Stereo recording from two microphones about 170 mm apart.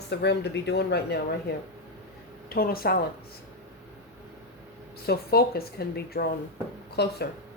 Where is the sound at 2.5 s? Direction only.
60° left (ahead or behind).